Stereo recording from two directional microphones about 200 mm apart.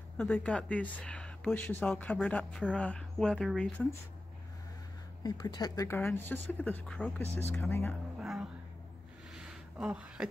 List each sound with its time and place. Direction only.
0.2 s speech: 5° left (ahead or behind)
5.2 s speech: 20° left (ahead or behind)
8.2 s music: centre (ahead or behind)
9.3 s a sound: centre (ahead or behind)